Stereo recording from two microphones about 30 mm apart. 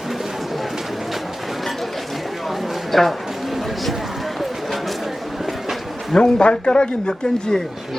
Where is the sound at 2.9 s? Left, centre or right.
Centre.